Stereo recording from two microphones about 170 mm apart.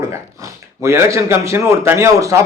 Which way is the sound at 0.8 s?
15° right (ahead or behind).